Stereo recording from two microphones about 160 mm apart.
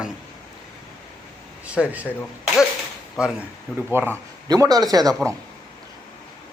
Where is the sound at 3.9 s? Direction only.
15° right (ahead or behind).